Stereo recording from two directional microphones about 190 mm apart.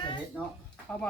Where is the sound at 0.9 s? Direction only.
5° left (ahead or behind).